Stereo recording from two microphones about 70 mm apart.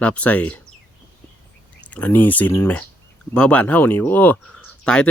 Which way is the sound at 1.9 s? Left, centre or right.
Left.